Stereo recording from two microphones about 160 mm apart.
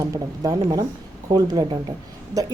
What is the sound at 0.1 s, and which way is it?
A woman's voice, 20° right (ahead or behind).